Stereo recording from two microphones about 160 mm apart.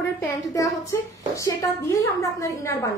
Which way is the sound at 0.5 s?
20° left (ahead or behind).